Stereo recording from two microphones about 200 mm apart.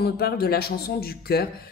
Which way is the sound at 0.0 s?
50° left (ahead or behind).